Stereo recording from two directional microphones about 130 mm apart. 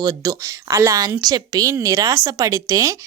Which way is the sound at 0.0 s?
25° right (ahead or behind).